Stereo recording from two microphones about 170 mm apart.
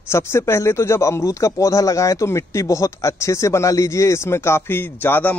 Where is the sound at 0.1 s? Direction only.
15° left (ahead or behind).